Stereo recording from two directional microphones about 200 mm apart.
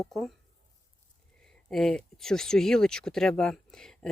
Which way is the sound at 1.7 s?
Centre (ahead or behind).